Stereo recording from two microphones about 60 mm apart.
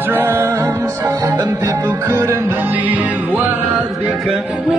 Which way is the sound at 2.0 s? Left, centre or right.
Right.